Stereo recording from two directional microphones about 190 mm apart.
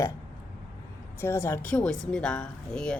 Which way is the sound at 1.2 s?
15° left (ahead or behind).